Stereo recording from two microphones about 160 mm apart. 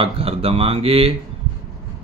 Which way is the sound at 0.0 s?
35° right (ahead or behind).